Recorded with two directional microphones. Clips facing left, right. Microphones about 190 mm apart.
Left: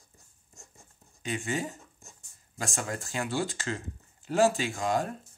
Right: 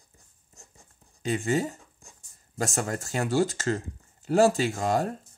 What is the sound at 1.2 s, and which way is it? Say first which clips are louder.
Speech: right 6 dB; 40° right (ahead or behind).